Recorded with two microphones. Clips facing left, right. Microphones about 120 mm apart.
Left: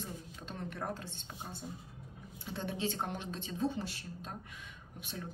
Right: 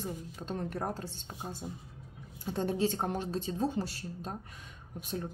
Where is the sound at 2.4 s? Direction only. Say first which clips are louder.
Right 7 dB; 40° right (ahead or behind).